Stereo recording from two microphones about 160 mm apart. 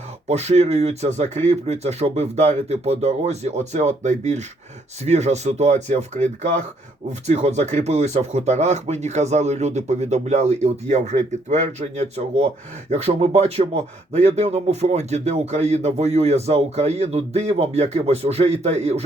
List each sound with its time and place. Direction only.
0.3 s speech: 45° right (ahead or behind)